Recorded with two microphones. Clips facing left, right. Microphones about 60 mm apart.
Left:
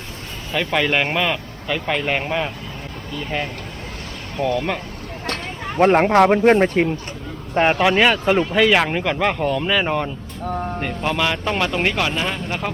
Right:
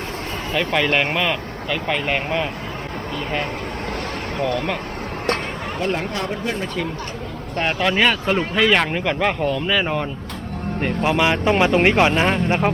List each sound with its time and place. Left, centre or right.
0.5 s speech: centre
4.4 s speech: centre
5.8 s speech: left
7.5 s speech: left
7.8 s speech: centre
10.8 s speech: centre; by 12.7 s right